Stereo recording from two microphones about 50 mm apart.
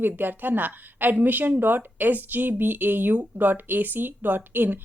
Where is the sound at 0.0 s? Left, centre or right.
Right.